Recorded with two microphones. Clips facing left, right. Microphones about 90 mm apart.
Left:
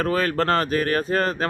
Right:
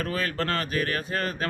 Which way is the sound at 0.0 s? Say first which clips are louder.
Left 7 dB; 40° left (ahead or behind).